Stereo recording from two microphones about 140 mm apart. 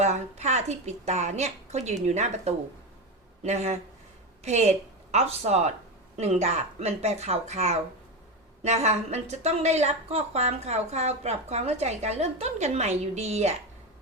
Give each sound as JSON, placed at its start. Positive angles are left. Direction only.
{"t": 0.0, "sound": "a woman's voice", "side_deg": -55}